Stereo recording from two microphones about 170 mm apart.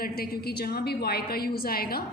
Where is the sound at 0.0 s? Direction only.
65° left (ahead or behind).